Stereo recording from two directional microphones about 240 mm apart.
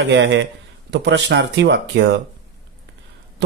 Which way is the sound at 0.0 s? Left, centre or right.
Right.